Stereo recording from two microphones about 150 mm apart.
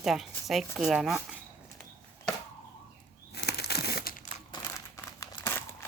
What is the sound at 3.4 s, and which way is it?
Crumpling, 90° left.